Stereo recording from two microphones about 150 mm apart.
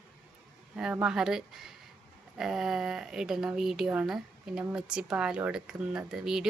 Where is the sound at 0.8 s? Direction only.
5° right (ahead or behind).